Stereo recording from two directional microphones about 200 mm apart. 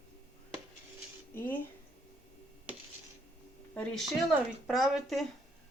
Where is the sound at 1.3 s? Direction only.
10° left (ahead or behind).